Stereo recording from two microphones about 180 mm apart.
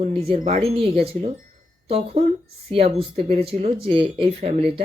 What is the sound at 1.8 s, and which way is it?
Speech, 35° right (ahead or behind).